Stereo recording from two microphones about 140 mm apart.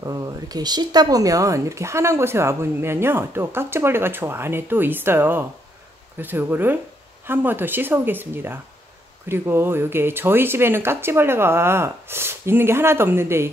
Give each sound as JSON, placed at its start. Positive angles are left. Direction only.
{"t": 0.0, "sound": "speech", "side_deg": -25}